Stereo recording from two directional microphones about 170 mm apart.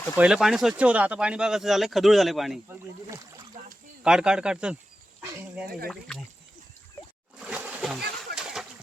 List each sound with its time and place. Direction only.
0.2 s speech: 5° right (ahead or behind)
2.6 s speech: 15° right (ahead or behind)
4.0 s speech: 5° right (ahead or behind)
5.9 s speech: centre (ahead or behind)
7.3 s splash: 5° right (ahead or behind)
8.4 s a sound: centre (ahead or behind)